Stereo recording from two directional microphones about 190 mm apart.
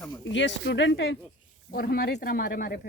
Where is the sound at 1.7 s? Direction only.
55° left (ahead or behind).